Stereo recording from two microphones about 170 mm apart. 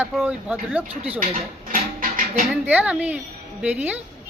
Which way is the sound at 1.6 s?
55° right (ahead or behind).